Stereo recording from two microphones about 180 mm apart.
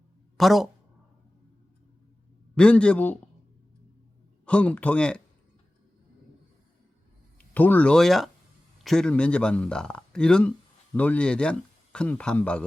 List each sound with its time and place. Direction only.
0.3 s speech: centre (ahead or behind)
2.6 s speech: 5° left (ahead or behind)
4.4 s speech: 5° left (ahead or behind)
7.3 s speech: 10° left (ahead or behind)